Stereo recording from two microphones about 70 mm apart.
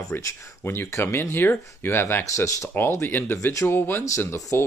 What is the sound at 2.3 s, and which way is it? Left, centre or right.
Speech, left.